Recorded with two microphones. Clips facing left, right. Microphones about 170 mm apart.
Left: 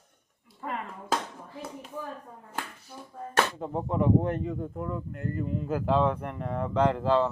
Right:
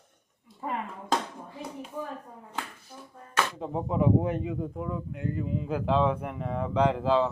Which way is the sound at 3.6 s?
Centre (ahead or behind).